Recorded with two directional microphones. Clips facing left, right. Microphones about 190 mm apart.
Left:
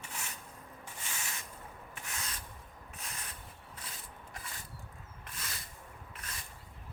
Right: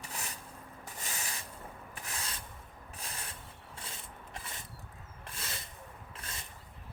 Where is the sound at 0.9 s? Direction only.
40° right (ahead or behind).